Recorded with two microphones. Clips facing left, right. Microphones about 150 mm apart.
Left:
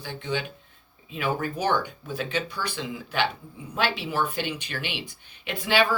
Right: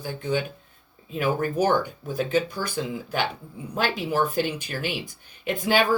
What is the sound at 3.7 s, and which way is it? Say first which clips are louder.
Speech: right 2 dB; 45° right (ahead or behind).